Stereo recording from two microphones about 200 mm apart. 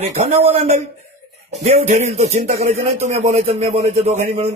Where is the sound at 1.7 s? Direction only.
35° right (ahead or behind).